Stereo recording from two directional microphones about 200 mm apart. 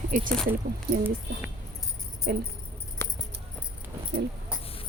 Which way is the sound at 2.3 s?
50° right (ahead or behind).